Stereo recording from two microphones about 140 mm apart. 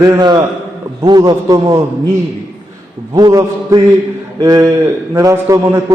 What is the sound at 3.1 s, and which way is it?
A man's voice, 25° right (ahead or behind).